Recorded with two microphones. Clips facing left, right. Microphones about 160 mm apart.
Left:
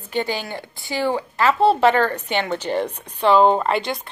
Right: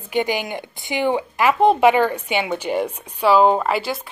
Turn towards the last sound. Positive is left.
turn(degrees=-5)  # may be behind; listen again after turning